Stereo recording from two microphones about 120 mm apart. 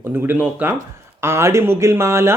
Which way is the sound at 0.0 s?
20° right (ahead or behind).